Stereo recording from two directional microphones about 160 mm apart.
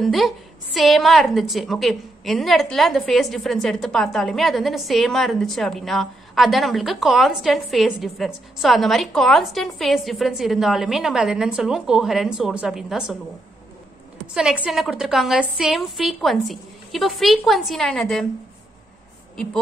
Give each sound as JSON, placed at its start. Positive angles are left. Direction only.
{"t": 0.0, "sound": "a woman's voice", "side_deg": 0}
{"t": 14.2, "sound": "a woman's voice", "side_deg": -5}